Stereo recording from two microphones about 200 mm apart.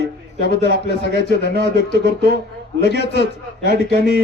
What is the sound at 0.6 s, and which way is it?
Speech, 55° left (ahead or behind).